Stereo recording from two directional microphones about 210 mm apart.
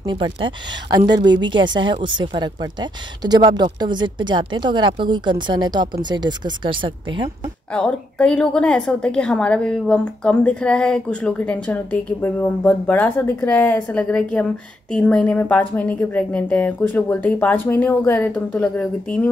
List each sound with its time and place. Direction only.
0.0 s speech: 20° right (ahead or behind)
7.7 s a woman's voice: 5° left (ahead or behind)